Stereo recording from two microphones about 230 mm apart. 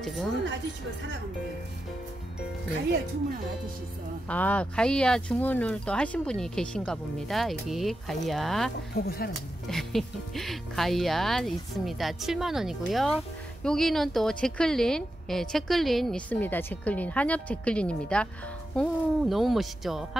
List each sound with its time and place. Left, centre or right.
0.0 s speech: centre
4.3 s a woman's voice: centre
8.9 s speech: left
9.7 s a woman's voice: centre